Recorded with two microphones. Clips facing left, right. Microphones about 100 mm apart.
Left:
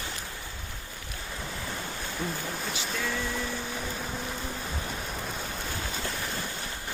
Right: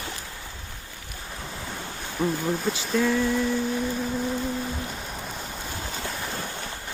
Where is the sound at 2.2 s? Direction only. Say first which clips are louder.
Right 9 dB; 15° right (ahead or behind).